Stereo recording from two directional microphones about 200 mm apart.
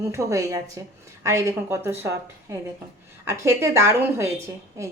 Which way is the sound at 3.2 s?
15° right (ahead or behind).